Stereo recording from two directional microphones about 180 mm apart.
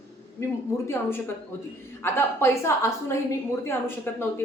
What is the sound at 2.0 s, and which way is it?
A woman's voice, 15° left (ahead or behind).